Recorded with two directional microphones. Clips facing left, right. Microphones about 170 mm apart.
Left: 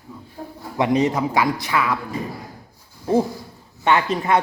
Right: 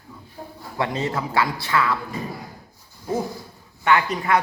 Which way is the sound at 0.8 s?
15° left (ahead or behind).